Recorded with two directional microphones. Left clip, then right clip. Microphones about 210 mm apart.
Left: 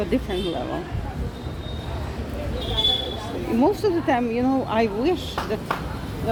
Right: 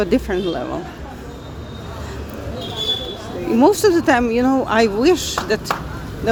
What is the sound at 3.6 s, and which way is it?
Speech, 20° right (ahead or behind).